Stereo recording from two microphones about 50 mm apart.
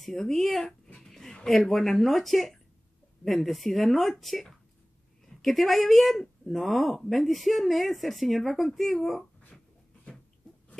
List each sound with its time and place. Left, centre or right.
0.0 s speech: centre
0.8 s a sound: left
1.6 s a woman's voice: centre